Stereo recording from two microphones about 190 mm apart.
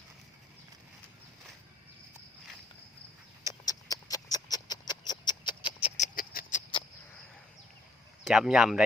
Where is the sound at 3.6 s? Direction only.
20° left (ahead or behind).